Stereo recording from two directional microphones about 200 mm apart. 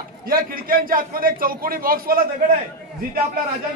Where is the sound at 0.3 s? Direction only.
45° right (ahead or behind).